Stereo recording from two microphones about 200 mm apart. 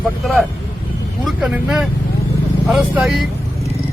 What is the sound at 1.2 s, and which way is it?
Speech, 5° right (ahead or behind).